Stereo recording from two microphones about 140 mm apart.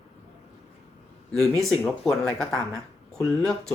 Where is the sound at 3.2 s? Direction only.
5° left (ahead or behind).